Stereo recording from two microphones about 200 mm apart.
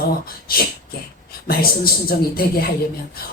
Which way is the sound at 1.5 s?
50° left (ahead or behind).